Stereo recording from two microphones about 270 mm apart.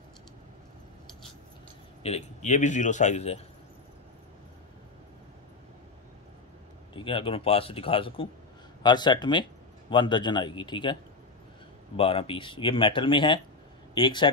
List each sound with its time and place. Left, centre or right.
2.0 s speech: left
7.0 s speech: centre
12.0 s speech: centre